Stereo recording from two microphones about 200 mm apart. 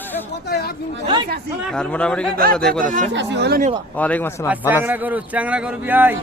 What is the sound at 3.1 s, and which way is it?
Speech, 60° right (ahead or behind).